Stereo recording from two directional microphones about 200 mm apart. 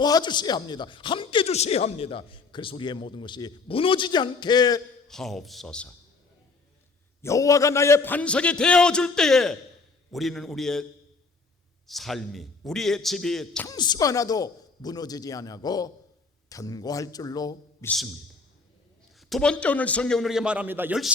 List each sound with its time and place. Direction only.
0.0 s a man's voice: 20° left (ahead or behind)
5.0 s a man's voice: centre (ahead or behind)
7.2 s a man's voice: 15° left (ahead or behind)
11.9 s a man's voice: centre (ahead or behind)
13.7 s a man's voice: 20° left (ahead or behind)
17.8 s a man's voice: centre (ahead or behind)
19.3 s a man's voice: 5° left (ahead or behind)